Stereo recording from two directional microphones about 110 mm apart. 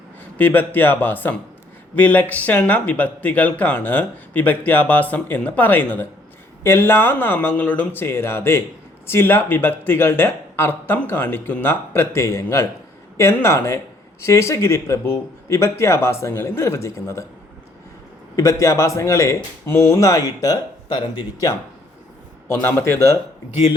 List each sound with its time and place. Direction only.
0.3 s speech: 15° left (ahead or behind)
18.3 s speech: 25° left (ahead or behind)
22.6 s speech: 25° left (ahead or behind)